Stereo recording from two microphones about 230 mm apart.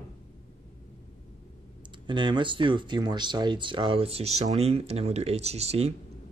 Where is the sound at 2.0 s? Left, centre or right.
Centre.